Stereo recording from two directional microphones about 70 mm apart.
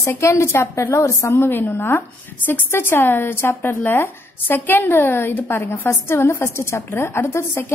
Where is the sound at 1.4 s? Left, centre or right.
Left.